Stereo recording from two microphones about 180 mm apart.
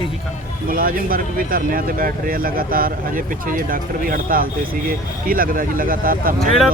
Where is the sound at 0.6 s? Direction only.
50° right (ahead or behind).